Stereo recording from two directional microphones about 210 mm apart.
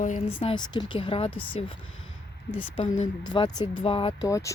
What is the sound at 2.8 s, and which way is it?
Speech, 35° left (ahead or behind).